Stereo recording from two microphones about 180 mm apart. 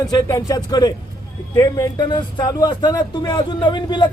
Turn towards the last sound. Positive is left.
turn(degrees=25)  # may be behind; listen again after turning